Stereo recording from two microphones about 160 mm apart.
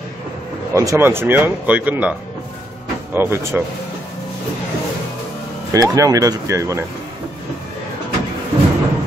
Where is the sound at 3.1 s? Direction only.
15° right (ahead or behind).